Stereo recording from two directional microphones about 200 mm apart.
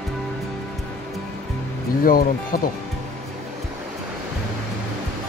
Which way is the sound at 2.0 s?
45° left (ahead or behind).